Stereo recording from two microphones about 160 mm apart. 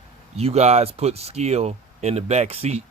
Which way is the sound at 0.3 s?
40° right (ahead or behind).